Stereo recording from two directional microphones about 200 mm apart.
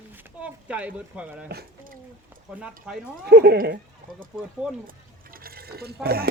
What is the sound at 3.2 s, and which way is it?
Speech, 55° right (ahead or behind).